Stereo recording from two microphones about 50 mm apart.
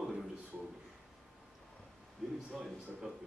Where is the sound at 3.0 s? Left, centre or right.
Centre.